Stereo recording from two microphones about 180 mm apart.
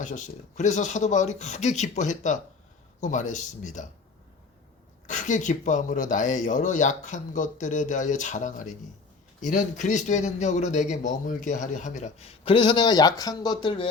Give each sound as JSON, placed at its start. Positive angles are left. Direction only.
{"t": 0.0, "sound": "speech", "side_deg": 45}
{"t": 5.0, "sound": "speech", "side_deg": 45}